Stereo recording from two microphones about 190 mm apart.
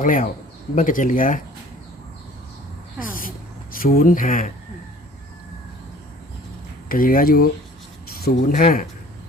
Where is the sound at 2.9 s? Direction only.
45° left (ahead or behind).